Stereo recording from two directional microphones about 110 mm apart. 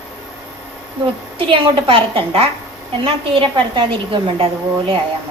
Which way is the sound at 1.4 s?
55° right (ahead or behind).